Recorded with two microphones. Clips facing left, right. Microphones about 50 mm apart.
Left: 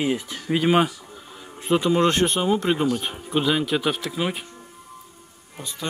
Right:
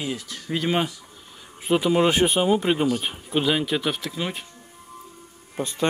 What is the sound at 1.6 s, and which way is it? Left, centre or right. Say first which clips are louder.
Speech: even; centre.